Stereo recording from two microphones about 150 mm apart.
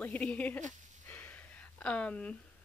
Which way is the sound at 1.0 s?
10° left (ahead or behind).